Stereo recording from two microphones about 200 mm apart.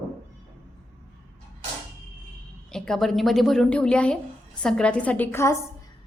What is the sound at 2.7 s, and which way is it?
A woman's voice, centre (ahead or behind).